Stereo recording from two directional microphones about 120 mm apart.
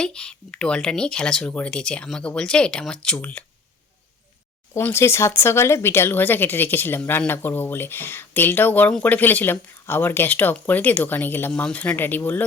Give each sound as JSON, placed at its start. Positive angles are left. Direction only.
{"t": 0.0, "sound": "speech", "side_deg": 5}
{"t": 4.7, "sound": "speech", "side_deg": 20}